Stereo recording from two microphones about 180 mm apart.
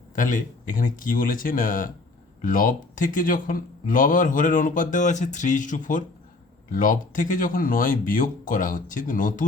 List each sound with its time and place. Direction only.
0.2 s speech: 45° left (ahead or behind)